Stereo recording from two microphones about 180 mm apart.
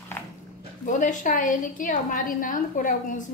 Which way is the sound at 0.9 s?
45° left (ahead or behind).